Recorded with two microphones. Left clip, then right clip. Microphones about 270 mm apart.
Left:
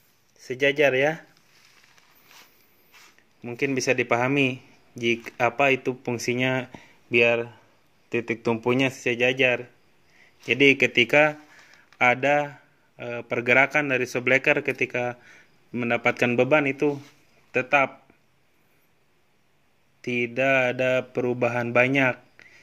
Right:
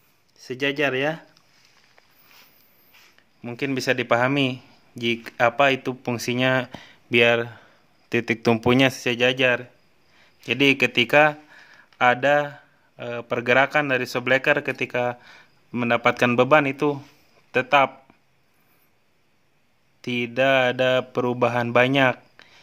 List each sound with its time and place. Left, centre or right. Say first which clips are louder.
0.4 s speech: left 3 dB; centre
3.4 s speech: even; centre
20.0 s speech: right 2 dB; centre